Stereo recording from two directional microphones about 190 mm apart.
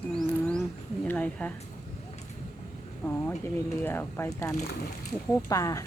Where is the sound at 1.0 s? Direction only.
5° left (ahead or behind).